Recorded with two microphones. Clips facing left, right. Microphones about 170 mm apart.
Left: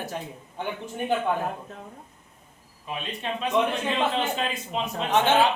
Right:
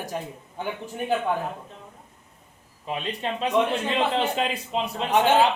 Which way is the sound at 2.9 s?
35° right (ahead or behind).